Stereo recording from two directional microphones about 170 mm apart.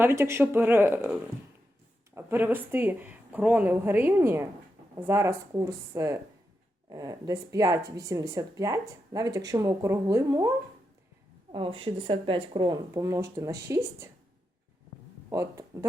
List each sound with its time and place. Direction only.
0.0 s speech: 15° right (ahead or behind)
11.5 s speech: 30° right (ahead or behind)
15.3 s speech: 20° right (ahead or behind)